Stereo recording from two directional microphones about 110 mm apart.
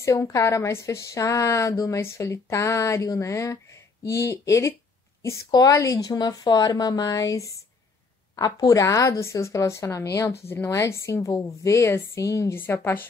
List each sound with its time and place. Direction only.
0.0 s a woman's voice: 25° left (ahead or behind)